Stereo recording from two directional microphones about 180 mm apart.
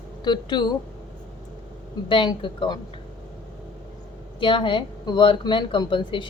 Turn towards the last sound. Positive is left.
turn(degrees=25)  # may be behind; listen again after turning